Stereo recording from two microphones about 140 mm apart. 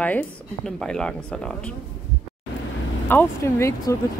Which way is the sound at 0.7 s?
5° left (ahead or behind).